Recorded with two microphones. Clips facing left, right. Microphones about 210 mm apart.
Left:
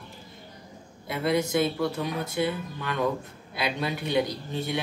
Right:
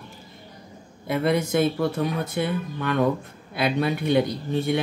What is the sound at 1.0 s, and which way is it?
Speech, 50° right (ahead or behind).